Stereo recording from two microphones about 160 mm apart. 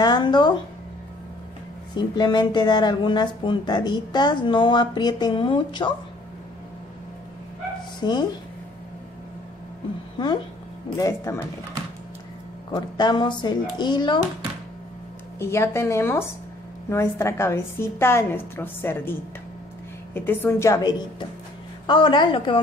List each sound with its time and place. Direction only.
0.0 s speech: 25° left (ahead or behind)
2.0 s speech: 25° left (ahead or behind)
8.0 s speech: 25° left (ahead or behind)
10.1 s speech: 30° left (ahead or behind)
12.7 s speech: 25° left (ahead or behind)
15.3 s a woman's voice: 15° left (ahead or behind)
20.2 s a woman's voice: 15° left (ahead or behind); by 22.6 s 30° left (ahead or behind)